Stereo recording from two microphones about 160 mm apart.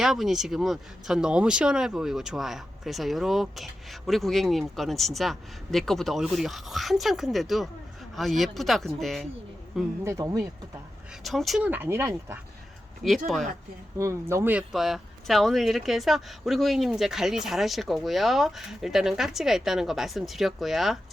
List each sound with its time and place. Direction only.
0.0 s speech: centre (ahead or behind)
10.0 s speech: 20° right (ahead or behind)
11.2 s speech: centre (ahead or behind); by 12.4 s 15° right (ahead or behind)
13.1 s speech: centre (ahead or behind)
14.0 s speech: 15° right (ahead or behind)
14.7 s speech: centre (ahead or behind)